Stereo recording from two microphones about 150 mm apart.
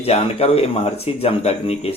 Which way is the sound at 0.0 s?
40° left (ahead or behind).